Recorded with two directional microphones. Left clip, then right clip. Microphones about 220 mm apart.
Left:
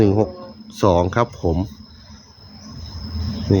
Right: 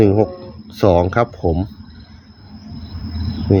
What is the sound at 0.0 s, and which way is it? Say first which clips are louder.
Speech: right 3 dB; 5° right (ahead or behind).